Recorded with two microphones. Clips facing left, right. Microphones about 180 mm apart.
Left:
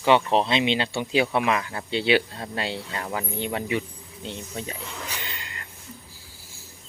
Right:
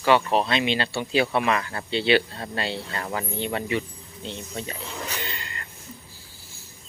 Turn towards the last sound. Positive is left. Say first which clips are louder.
# right 3 dB
turn(degrees=10)  # may be behind; listen again after turning